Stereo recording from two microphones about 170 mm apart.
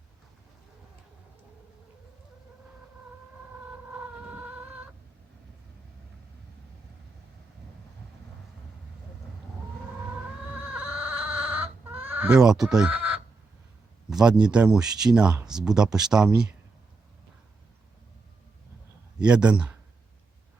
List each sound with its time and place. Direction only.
4.3 s a sound: 10° right (ahead or behind)
11.2 s chicken: 10° right (ahead or behind)
14.1 s speech: 5° right (ahead or behind)
19.2 s speech: 5° right (ahead or behind)